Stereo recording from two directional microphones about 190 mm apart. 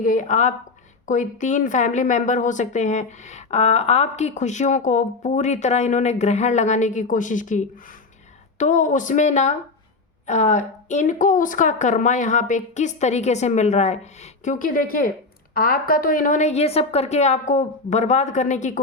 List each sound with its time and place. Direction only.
0.0 s a woman's voice: 45° left (ahead or behind)